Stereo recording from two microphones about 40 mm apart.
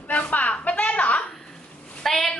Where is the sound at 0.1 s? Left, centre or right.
Left.